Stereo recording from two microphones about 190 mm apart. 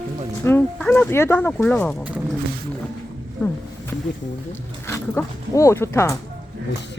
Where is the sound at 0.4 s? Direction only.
15° left (ahead or behind).